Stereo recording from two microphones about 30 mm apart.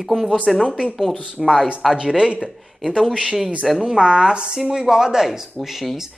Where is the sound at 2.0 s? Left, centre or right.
Right.